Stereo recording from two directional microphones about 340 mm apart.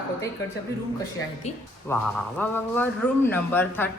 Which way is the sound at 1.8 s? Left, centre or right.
Centre.